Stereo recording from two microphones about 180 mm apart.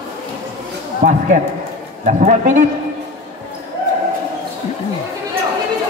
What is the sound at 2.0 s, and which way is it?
Speech, 45° right (ahead or behind).